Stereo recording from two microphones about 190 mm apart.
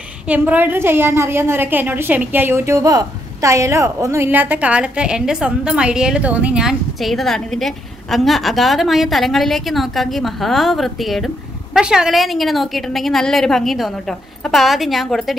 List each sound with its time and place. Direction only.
0.3 s a woman's voice: 10° right (ahead or behind)